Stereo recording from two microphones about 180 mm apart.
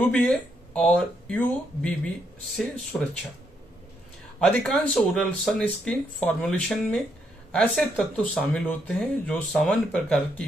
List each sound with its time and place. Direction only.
0.0 s speech: 5° left (ahead or behind)
2.9 s speech: 5° left (ahead or behind)
4.4 s speech: 5° left (ahead or behind)